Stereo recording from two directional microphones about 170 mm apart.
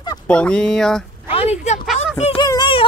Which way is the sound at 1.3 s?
40° left (ahead or behind).